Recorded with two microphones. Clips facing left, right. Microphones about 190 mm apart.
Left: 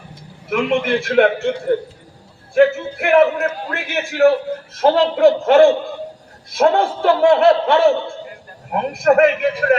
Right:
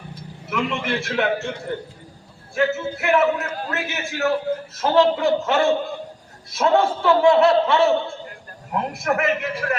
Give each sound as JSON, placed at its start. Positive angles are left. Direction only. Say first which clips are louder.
{"t": 0.5, "sound": "a man's voice", "louder": "left 7 dB", "side_deg": 60}
{"t": 2.6, "sound": "a man's voice", "louder": "left 8 dB", "side_deg": 65}